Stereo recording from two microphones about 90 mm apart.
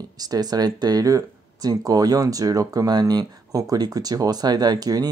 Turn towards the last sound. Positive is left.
turn(degrees=-50)  # may be behind; listen again after turning